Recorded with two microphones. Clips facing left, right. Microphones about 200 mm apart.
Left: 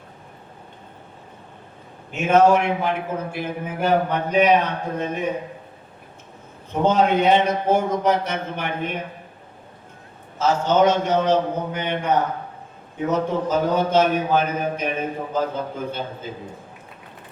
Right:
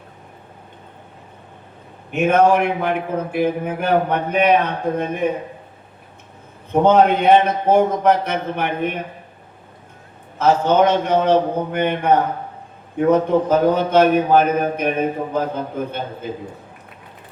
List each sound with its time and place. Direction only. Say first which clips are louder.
2.1 s a man's voice: right 1 dB; 60° right (ahead or behind)
6.8 s a man's voice: right 3 dB; 60° right (ahead or behind)
10.3 s a man's voice: right 3 dB; 60° right (ahead or behind)